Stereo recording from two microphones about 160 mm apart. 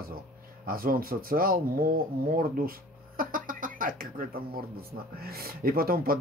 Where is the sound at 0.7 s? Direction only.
65° right (ahead or behind).